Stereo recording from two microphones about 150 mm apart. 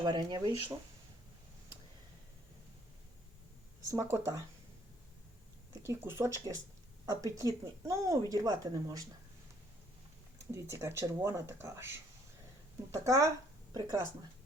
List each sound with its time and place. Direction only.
0.0 s speech: 30° right (ahead or behind)
3.9 s speech: 20° right (ahead or behind)
5.7 s speech: 20° right (ahead or behind)
10.5 s speech: 20° right (ahead or behind)